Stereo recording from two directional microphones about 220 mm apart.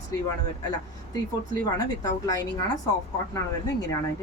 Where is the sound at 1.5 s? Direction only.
15° left (ahead or behind).